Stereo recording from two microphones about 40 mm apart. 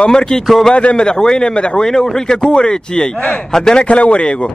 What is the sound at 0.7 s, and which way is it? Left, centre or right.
Speech, left.